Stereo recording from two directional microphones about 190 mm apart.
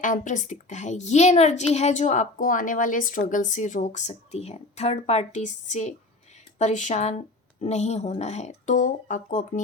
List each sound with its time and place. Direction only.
0.0 s a woman's voice: 40° left (ahead or behind)